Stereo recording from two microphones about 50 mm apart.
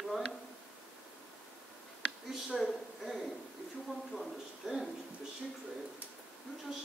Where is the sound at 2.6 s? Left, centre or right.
Centre.